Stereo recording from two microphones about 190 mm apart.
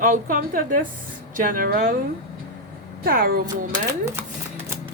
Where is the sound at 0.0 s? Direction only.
45° right (ahead or behind).